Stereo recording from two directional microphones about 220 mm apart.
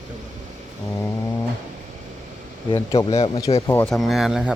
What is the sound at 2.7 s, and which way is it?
Speech, 20° left (ahead or behind).